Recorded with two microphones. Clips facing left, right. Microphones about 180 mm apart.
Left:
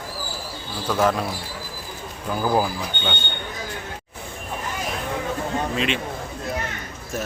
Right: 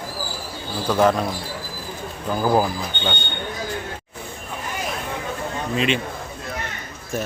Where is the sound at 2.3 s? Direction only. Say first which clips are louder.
Right 2 dB; 10° right (ahead or behind).